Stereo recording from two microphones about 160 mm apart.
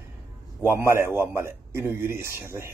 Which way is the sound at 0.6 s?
15° right (ahead or behind).